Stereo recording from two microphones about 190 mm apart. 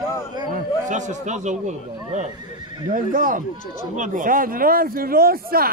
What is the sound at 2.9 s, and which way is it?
Speech, 45° right (ahead or behind).